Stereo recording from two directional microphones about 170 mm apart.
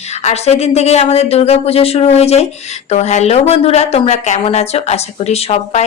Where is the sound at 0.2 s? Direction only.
40° left (ahead or behind).